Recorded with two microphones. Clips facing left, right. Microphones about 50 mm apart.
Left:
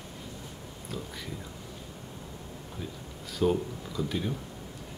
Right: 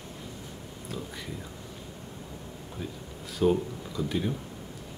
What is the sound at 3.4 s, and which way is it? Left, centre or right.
Speech, centre.